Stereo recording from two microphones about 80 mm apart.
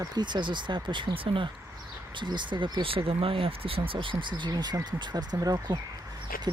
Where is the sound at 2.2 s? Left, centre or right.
Right.